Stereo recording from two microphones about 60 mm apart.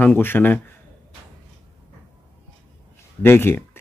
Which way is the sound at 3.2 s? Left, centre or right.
Left.